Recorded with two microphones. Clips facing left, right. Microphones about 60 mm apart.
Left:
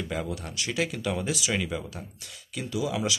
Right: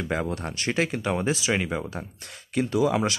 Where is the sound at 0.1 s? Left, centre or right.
Right.